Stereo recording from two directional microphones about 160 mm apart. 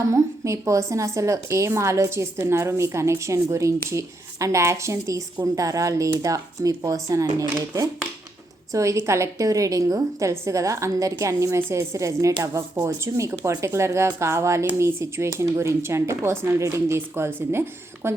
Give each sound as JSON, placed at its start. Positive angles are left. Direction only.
{"t": 0.1, "sound": "speech", "side_deg": -20}